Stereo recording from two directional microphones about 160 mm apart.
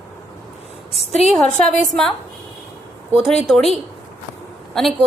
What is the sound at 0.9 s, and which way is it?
Speech, 40° left (ahead or behind).